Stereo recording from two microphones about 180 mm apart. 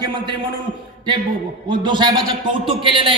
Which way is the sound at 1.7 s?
25° right (ahead or behind).